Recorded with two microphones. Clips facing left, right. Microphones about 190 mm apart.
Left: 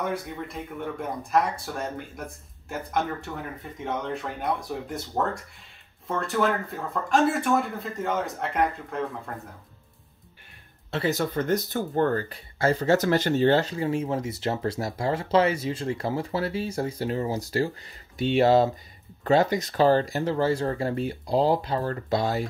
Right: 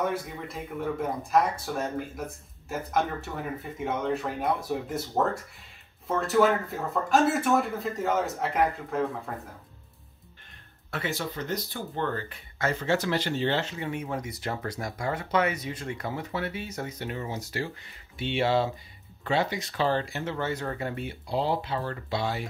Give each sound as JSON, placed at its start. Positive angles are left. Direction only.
{"t": 0.0, "sound": "speech", "side_deg": 0}
{"t": 10.9, "sound": "speech", "side_deg": 35}